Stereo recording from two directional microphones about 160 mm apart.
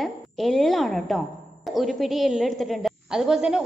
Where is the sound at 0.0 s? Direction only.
Centre (ahead or behind).